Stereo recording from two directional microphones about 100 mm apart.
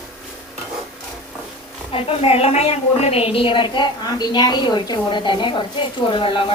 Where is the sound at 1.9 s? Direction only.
75° left (ahead or behind).